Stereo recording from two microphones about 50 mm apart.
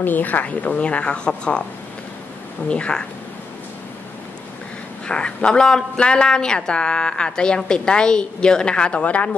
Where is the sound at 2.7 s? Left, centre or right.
Centre.